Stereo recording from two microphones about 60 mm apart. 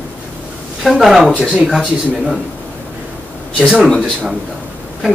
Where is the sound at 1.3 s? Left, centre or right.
Right.